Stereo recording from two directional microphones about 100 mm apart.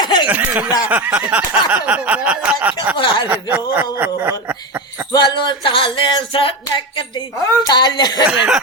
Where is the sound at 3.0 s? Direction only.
55° left (ahead or behind).